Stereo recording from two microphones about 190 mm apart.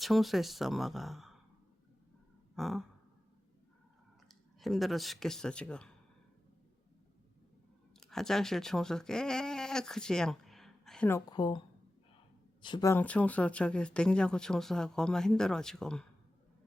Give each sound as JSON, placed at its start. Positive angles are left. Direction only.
{"t": 0.0, "sound": "speech", "side_deg": 0}
{"t": 2.6, "sound": "speech", "side_deg": 0}
{"t": 4.3, "sound": "speech", "side_deg": 0}
{"t": 7.9, "sound": "speech", "side_deg": 0}
{"t": 11.3, "sound": "a woman's voice", "side_deg": 25}
{"t": 12.6, "sound": "a woman's voice", "side_deg": 25}
{"t": 12.9, "sound": "speech", "side_deg": 10}